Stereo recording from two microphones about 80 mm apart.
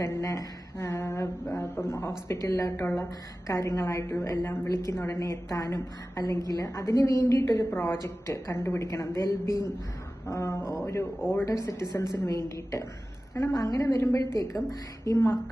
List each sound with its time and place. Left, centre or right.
0.0 s a woman's voice: left
3.4 s a woman's voice: left
5.2 s a woman's voice: left
7.7 s a woman's voice: left
13.3 s a woman's voice: left